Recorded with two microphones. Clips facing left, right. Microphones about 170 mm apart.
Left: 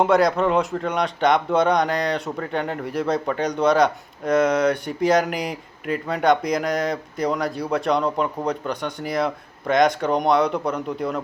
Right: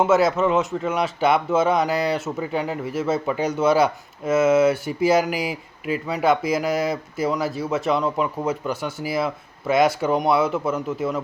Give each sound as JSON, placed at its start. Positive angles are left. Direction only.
{"t": 0.0, "sound": "speech", "side_deg": -5}